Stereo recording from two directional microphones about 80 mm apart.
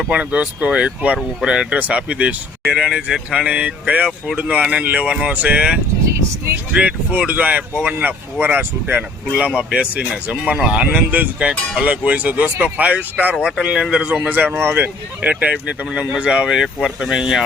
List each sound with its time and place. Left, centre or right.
0.1 s speech: centre
14.3 s speech: right
15.2 s speech: centre